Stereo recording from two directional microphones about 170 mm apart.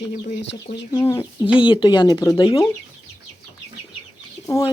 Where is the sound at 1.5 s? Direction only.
30° left (ahead or behind).